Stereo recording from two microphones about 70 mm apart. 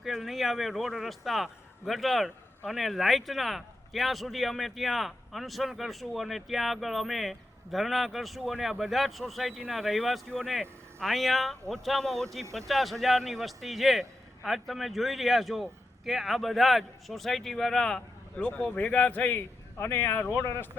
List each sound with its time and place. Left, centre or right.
0.0 s a man's voice: centre
18.7 s speech: centre